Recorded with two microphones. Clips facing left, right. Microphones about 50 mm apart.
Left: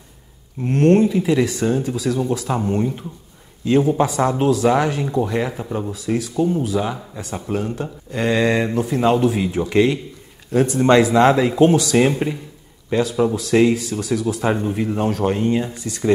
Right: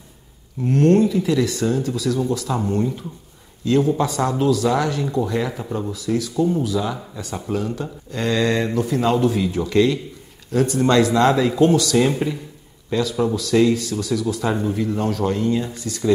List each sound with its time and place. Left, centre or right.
0.6 s speech: left
5.9 s speech: left